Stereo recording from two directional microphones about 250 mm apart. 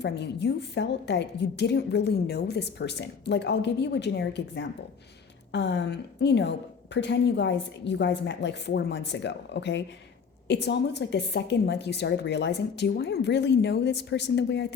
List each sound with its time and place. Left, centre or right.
0.0 s a woman's voice: left